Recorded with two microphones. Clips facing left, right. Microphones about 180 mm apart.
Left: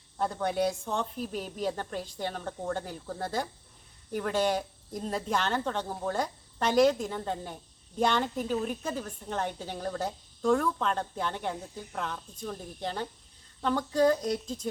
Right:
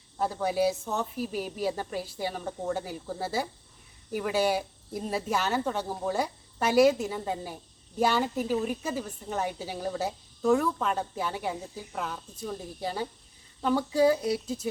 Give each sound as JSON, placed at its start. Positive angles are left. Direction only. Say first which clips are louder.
{"t": 0.2, "sound": "speech", "louder": "right 2 dB", "side_deg": -5}